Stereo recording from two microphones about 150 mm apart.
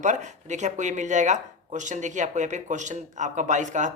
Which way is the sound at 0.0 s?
55° right (ahead or behind).